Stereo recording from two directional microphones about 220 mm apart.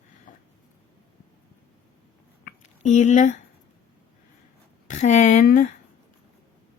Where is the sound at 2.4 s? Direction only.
30° left (ahead or behind).